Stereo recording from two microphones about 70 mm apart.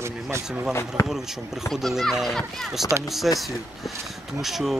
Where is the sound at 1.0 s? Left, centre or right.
Centre.